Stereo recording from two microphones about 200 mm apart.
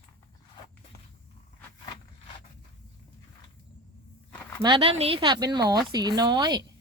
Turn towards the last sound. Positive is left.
turn(degrees=-20)  # may be behind; listen again after turning